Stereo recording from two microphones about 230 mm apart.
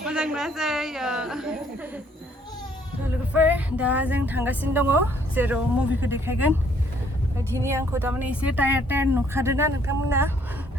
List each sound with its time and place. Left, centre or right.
0.0 s speech: centre
3.3 s speech: centre